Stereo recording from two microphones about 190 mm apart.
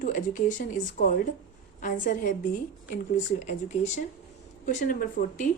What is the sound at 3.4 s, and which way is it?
Speech, 40° left (ahead or behind).